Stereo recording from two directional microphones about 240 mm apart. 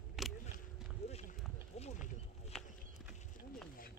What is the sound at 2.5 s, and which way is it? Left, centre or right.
Horse, centre.